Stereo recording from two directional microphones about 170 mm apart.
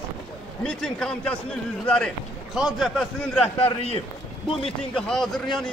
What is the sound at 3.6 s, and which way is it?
Speech, 35° left (ahead or behind).